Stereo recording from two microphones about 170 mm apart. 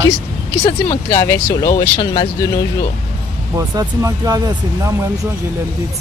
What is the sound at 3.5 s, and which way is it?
Speech, 20° right (ahead or behind).